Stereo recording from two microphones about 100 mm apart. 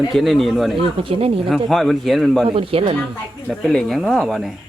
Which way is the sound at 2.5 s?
65° right (ahead or behind).